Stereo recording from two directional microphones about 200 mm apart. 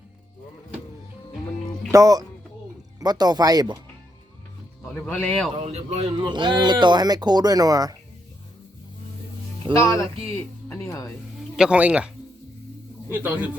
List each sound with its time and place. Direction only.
1.9 s a man's voice: 15° right (ahead or behind)
4.9 s a man's voice: 5° left (ahead or behind)
5.6 s a man's voice: 30° right (ahead or behind)
9.7 s a man's voice: 15° left (ahead or behind)
11.3 s a man's voice: 5° right (ahead or behind)